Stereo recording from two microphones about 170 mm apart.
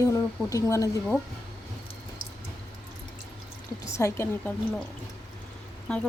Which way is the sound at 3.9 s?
15° left (ahead or behind).